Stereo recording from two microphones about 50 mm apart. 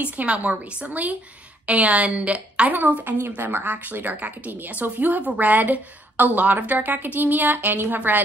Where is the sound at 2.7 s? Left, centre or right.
Right.